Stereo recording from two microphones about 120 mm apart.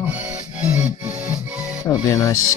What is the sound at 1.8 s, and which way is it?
Speech, 25° left (ahead or behind).